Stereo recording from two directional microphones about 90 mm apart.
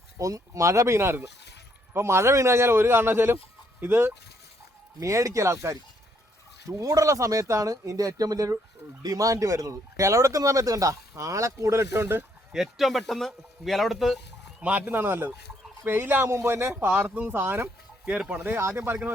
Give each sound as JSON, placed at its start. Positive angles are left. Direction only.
{"t": 0.2, "sound": "speech", "side_deg": -40}
{"t": 4.9, "sound": "speech", "side_deg": -35}
{"t": 12.5, "sound": "speech", "side_deg": 0}
{"t": 14.6, "sound": "speech", "side_deg": -15}
{"t": 18.0, "sound": "speech", "side_deg": -15}
{"t": 18.5, "sound": "speech", "side_deg": -30}